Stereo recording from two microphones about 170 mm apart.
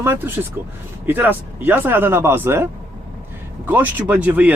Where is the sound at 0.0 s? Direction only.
15° right (ahead or behind).